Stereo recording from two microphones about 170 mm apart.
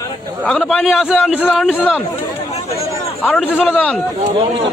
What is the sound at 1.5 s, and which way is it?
Speech, 5° right (ahead or behind).